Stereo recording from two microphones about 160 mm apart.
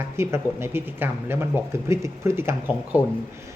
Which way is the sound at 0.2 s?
15° right (ahead or behind).